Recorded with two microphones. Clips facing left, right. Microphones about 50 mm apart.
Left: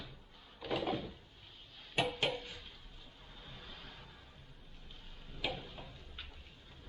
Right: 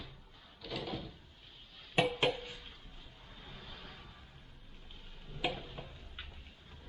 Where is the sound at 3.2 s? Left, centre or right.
Centre.